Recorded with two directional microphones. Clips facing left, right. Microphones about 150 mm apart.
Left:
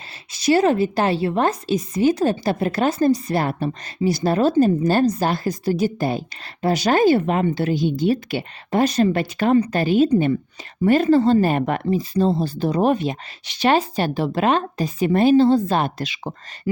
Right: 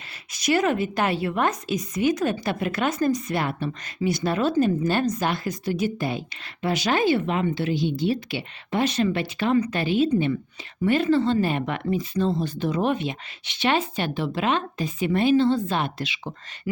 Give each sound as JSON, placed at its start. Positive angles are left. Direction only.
{"t": 0.3, "sound": "a woman's voice", "side_deg": 30}